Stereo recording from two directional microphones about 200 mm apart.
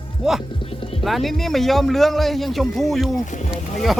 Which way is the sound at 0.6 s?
25° left (ahead or behind).